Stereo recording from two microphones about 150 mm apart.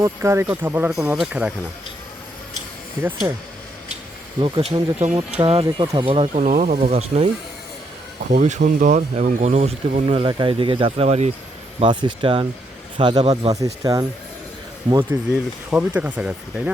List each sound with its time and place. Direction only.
0.0 s speech: 20° right (ahead or behind)
4.4 s speech: 35° right (ahead or behind)
5.6 s speech: 25° right (ahead or behind)
6.3 s speech: 55° right (ahead or behind)
8.3 s speech: 55° right (ahead or behind)
11.8 s speech: 30° right (ahead or behind)
15.1 s speech: 25° right (ahead or behind)
15.7 s speech: 10° right (ahead or behind)